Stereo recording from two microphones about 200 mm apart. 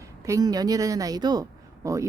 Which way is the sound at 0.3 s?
20° right (ahead or behind).